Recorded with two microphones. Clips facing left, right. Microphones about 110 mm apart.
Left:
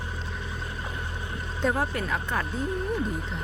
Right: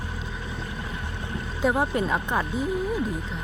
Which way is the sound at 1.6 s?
10° right (ahead or behind).